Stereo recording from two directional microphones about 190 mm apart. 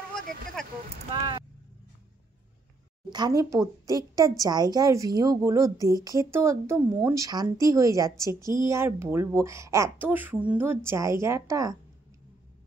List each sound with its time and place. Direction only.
0.6 s speech: 5° left (ahead or behind)
1.1 s speech: 25° right (ahead or behind)
3.1 s speech: 20° right (ahead or behind)